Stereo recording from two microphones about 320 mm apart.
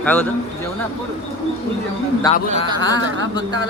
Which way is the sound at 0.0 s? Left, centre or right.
Centre.